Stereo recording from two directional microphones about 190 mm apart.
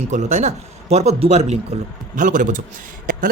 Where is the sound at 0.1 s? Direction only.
40° right (ahead or behind).